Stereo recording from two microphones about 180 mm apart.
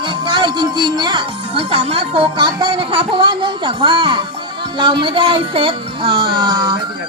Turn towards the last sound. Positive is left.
turn(degrees=-25)  # may be behind; listen again after turning